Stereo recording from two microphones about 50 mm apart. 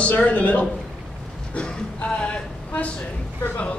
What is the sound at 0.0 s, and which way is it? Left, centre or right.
A man's voice, left.